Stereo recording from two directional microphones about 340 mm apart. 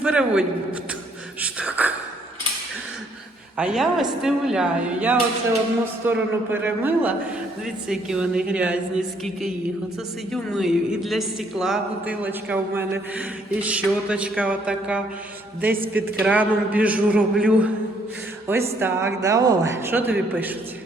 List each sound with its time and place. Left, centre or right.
0.0 s a man's voice: centre
1.4 s a sound: centre
3.6 s a man's voice: centre
18.8 s a man's voice: centre